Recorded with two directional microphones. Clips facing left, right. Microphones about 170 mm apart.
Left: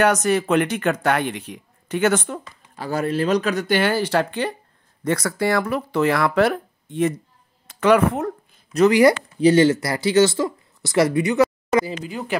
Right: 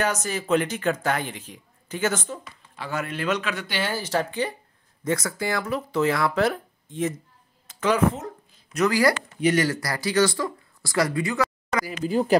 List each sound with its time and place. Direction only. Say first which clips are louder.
0.0 s speech: left 8 dB; 65° left (ahead or behind)
2.7 s speech: left 7 dB; 40° left (ahead or behind)
3.8 s speech: left 6 dB; 65° left (ahead or behind)
8.7 s speech: left 7 dB; 25° left (ahead or behind)
12.0 s speech: right 6 dB; 35° right (ahead or behind)